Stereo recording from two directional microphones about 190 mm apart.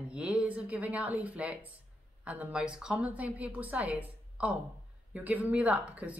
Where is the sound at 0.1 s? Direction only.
5° right (ahead or behind).